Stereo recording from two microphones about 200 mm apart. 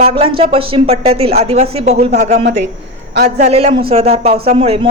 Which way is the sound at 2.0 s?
50° right (ahead or behind).